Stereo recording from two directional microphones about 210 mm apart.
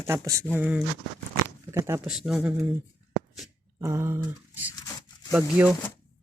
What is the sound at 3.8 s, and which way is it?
Speech, 15° right (ahead or behind).